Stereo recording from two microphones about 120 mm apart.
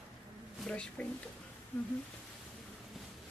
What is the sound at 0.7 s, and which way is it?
Speech, 10° left (ahead or behind).